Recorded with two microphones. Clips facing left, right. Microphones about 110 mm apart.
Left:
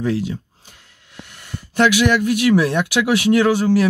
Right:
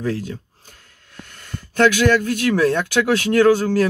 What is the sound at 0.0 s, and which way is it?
Speech, 15° left (ahead or behind).